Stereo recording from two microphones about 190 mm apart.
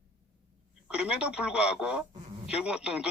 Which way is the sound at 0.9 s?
5° right (ahead or behind).